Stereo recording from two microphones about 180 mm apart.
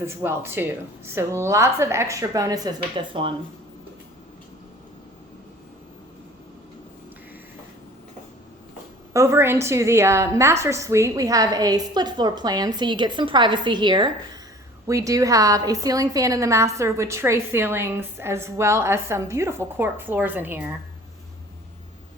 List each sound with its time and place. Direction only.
0.0 s a woman's voice: 15° right (ahead or behind)
9.1 s a woman's voice: 15° right (ahead or behind)